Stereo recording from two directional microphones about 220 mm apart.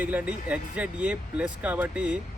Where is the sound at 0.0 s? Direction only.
10° right (ahead or behind).